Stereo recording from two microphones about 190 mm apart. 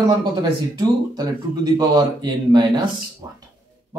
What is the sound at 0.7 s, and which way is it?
Speech, 20° right (ahead or behind).